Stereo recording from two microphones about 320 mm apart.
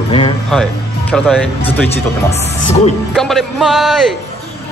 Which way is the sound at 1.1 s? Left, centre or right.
Centre.